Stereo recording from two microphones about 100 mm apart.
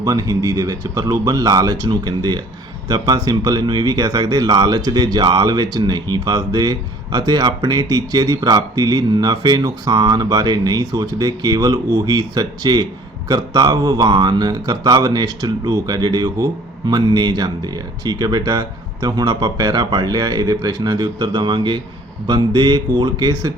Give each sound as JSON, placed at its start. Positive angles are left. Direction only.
{"t": 0.0, "sound": "speech", "side_deg": -35}